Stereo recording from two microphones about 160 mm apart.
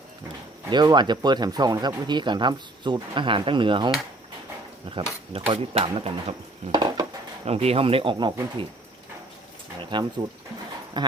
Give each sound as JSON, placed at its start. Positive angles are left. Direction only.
{"t": 0.7, "sound": "speech", "side_deg": -25}
{"t": 5.3, "sound": "speech", "side_deg": -35}
{"t": 6.7, "sound": "dishes", "side_deg": -25}
{"t": 7.4, "sound": "speech", "side_deg": -40}
{"t": 9.9, "sound": "speech", "side_deg": -30}